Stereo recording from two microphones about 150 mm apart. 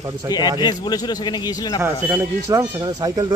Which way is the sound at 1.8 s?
15° right (ahead or behind).